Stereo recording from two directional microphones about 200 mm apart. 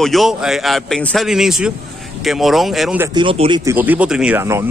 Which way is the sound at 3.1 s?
25° right (ahead or behind).